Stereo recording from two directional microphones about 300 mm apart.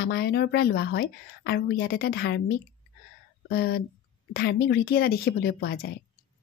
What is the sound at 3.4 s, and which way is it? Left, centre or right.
Speech, left.